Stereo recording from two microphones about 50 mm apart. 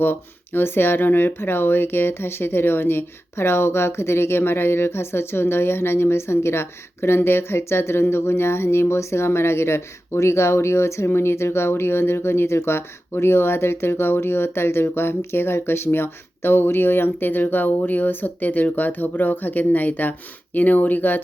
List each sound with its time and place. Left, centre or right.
0.0 s speech: left